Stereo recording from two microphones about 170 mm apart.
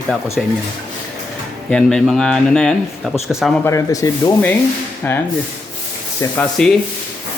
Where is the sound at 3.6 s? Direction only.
20° left (ahead or behind).